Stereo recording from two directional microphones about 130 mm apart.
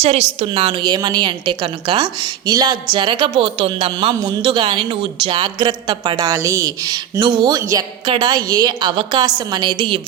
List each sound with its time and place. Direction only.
0.0 s a woman's voice: 50° right (ahead or behind); by 7.9 s 30° right (ahead or behind)
8.0 s a woman's voice: 40° right (ahead or behind)